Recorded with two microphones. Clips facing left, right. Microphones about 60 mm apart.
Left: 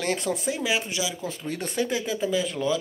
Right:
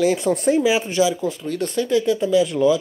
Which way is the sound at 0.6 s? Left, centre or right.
Centre.